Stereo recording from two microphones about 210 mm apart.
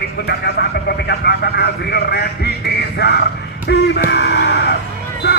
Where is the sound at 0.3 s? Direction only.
50° left (ahead or behind).